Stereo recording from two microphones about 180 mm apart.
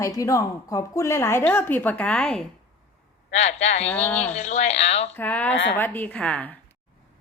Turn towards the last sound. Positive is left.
turn(degrees=10)  # may be behind; listen again after turning